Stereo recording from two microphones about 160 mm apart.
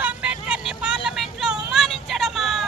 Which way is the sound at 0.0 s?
5° right (ahead or behind).